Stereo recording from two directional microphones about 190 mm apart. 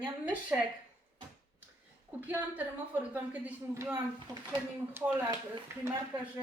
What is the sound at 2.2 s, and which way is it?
Speech, 10° right (ahead or behind).